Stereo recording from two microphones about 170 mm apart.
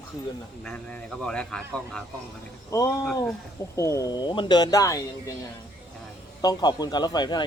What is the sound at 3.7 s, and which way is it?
Speech, 20° left (ahead or behind).